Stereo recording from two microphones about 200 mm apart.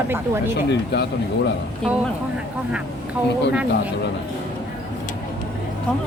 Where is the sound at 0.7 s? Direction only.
55° left (ahead or behind).